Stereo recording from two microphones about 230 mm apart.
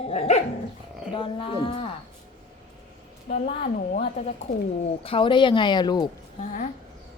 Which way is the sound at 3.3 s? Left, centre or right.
Left.